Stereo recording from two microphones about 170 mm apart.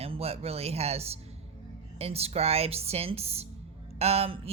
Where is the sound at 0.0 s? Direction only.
35° right (ahead or behind).